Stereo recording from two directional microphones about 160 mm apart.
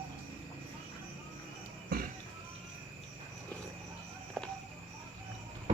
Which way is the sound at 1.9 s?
70° right (ahead or behind).